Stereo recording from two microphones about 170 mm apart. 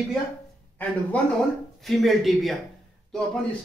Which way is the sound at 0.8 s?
10° left (ahead or behind).